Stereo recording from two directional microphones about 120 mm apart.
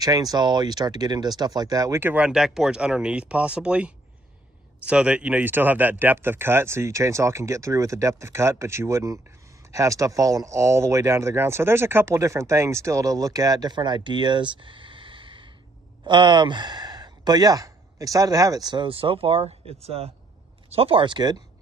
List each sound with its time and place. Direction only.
0.0 s speech: 30° right (ahead or behind)
2.0 s speech: 15° right (ahead or behind); by 21.4 s 35° right (ahead or behind)